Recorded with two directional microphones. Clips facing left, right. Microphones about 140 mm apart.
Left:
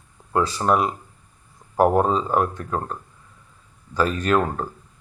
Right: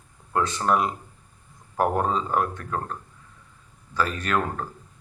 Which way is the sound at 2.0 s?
25° left (ahead or behind).